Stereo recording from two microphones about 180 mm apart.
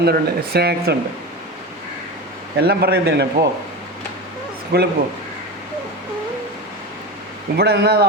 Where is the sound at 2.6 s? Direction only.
60° right (ahead or behind).